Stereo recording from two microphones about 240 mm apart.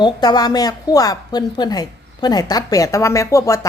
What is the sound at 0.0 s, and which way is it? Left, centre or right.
A woman's voice, centre.